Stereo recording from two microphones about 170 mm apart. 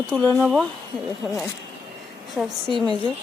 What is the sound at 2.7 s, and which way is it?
Speech, 25° right (ahead or behind).